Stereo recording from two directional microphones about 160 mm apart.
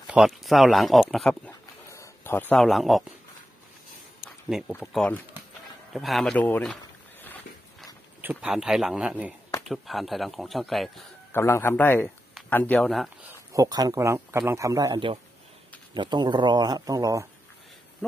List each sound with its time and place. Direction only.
0.0 s speech: 5° right (ahead or behind)
1.5 s a sound: 20° left (ahead or behind); by 3.0 s centre (ahead or behind)
4.5 s speech: 5° right (ahead or behind)
4.9 s speech: 5° left (ahead or behind)
6.6 s boat: 10° left (ahead or behind)
8.2 s speech: 10° right (ahead or behind)
11.3 s speech: 15° left (ahead or behind)
13.5 s a man's voice: 20° right (ahead or behind)